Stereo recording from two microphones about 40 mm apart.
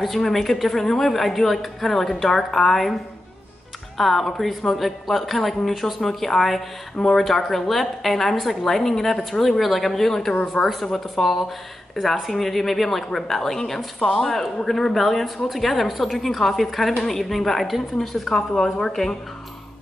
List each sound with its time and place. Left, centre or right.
0.0 s a woman's voice: centre
4.0 s a woman's voice: centre